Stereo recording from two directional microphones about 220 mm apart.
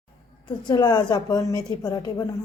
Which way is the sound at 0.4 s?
20° left (ahead or behind).